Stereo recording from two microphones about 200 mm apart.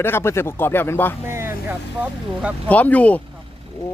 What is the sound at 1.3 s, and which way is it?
Speech, 10° right (ahead or behind).